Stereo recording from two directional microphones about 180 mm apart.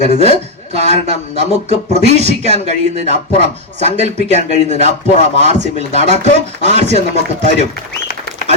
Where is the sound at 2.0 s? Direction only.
40° right (ahead or behind).